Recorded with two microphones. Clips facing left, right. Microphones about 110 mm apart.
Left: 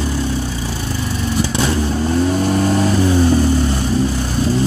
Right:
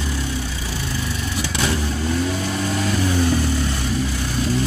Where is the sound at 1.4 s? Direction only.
30° left (ahead or behind).